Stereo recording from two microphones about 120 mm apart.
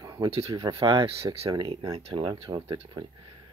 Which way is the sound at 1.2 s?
55° right (ahead or behind).